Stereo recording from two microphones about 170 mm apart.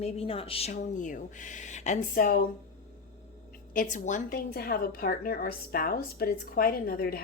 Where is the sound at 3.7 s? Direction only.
45° left (ahead or behind).